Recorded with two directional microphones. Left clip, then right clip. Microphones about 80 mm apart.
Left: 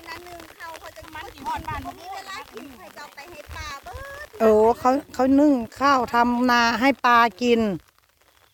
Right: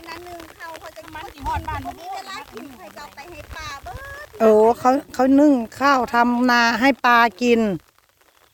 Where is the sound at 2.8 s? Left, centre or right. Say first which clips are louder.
Right 2 dB; centre.